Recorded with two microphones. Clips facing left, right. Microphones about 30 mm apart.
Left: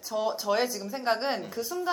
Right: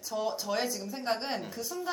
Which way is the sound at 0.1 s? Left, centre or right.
Centre.